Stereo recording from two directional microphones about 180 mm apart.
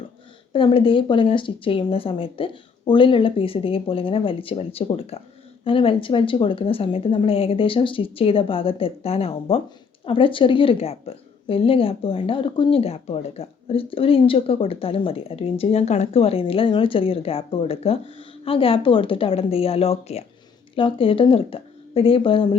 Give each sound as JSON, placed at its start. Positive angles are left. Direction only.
{"t": 0.5, "sound": "a woman's voice", "side_deg": 30}